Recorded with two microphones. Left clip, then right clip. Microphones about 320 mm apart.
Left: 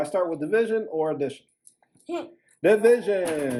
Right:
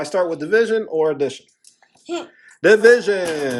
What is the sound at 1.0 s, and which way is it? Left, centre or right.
Speech, right.